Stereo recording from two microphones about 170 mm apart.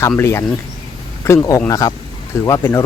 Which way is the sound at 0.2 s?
15° left (ahead or behind).